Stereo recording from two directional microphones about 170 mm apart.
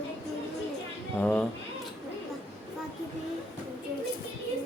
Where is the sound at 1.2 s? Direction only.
5° left (ahead or behind).